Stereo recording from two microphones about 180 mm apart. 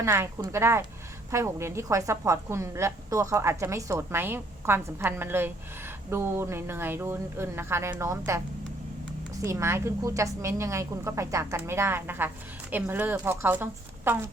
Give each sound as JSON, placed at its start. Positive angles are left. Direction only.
{"t": 0.0, "sound": "a woman's voice", "side_deg": -15}
{"t": 9.4, "sound": "a woman's voice", "side_deg": -15}